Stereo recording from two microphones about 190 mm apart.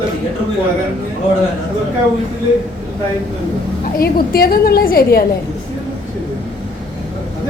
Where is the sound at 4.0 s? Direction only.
50° left (ahead or behind).